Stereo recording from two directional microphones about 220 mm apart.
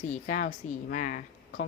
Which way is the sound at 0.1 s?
35° left (ahead or behind).